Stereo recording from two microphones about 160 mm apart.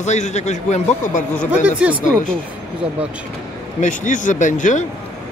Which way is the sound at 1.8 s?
10° right (ahead or behind).